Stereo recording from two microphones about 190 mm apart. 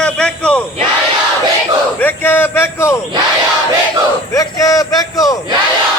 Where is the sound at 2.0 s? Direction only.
10° left (ahead or behind).